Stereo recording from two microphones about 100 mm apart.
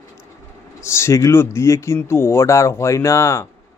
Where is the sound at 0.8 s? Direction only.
30° left (ahead or behind).